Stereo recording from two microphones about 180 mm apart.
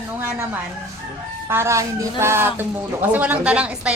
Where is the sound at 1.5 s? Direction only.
15° right (ahead or behind).